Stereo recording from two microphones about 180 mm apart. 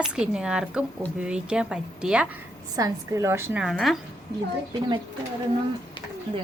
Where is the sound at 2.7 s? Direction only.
20° right (ahead or behind).